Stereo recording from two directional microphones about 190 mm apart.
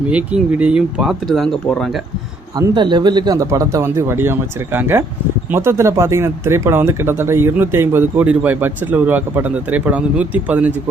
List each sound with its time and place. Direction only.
0.1 s speech: 5° right (ahead or behind)
2.6 s speech: 25° right (ahead or behind); by 10.7 s 10° right (ahead or behind)